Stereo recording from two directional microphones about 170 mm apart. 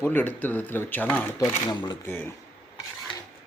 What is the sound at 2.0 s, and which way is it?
Speech, 10° left (ahead or behind).